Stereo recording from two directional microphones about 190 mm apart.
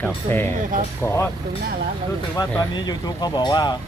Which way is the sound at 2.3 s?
20° left (ahead or behind).